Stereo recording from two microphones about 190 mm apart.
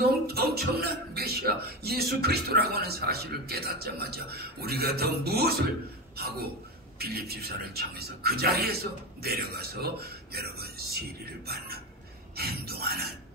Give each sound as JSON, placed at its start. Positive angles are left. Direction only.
{"t": 0.0, "sound": "a man's voice", "side_deg": -55}